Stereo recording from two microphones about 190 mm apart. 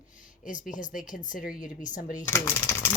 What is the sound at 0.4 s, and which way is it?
Speech, 45° left (ahead or behind).